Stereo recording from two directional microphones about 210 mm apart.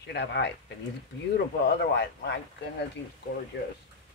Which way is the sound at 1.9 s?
55° left (ahead or behind).